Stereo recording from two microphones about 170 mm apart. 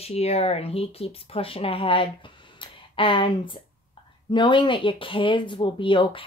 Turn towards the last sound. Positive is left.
turn(degrees=30)  # may be behind; listen again after turning